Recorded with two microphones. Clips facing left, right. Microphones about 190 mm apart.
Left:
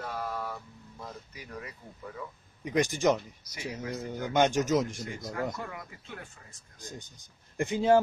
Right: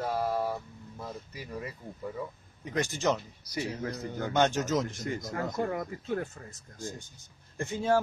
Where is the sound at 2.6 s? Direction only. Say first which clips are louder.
Left 3 dB; 15° left (ahead or behind).